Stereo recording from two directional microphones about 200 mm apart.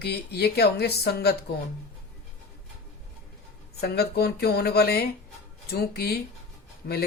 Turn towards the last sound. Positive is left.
turn(degrees=55)  # may be behind; listen again after turning